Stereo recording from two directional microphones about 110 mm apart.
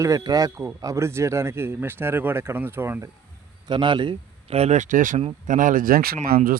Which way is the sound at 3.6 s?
45° right (ahead or behind).